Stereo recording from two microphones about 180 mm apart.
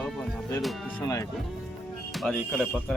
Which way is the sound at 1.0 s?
20° left (ahead or behind).